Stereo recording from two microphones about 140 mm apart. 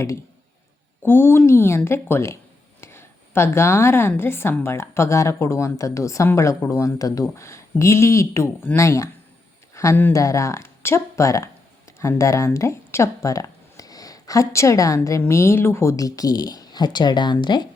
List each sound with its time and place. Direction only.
1.0 s a woman's voice: 15° left (ahead or behind); by 17.7 s 30° left (ahead or behind)